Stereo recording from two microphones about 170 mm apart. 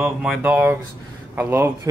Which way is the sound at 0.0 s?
5° right (ahead or behind).